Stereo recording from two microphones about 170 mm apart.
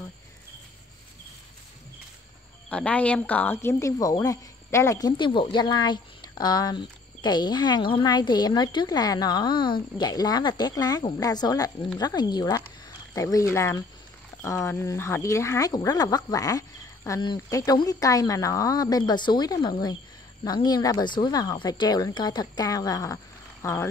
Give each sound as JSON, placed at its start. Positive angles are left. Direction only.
{"t": 2.7, "sound": "speech", "side_deg": 5}